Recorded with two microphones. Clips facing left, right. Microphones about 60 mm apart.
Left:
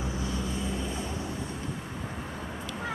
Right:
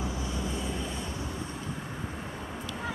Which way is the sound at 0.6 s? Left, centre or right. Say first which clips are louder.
Left 1 dB; centre.